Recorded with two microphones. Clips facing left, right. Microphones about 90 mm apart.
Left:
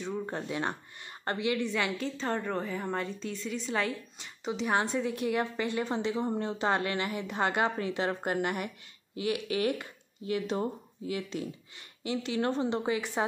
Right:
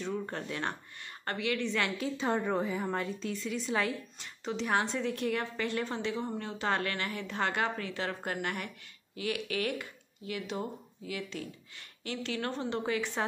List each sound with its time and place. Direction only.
0.0 s a sound: 5° left (ahead or behind)
0.4 s a woman's voice: 15° left (ahead or behind)
2.0 s a woman's voice: 5° right (ahead or behind); by 11.4 s 25° left (ahead or behind)
12.0 s a woman's voice: 15° left (ahead or behind)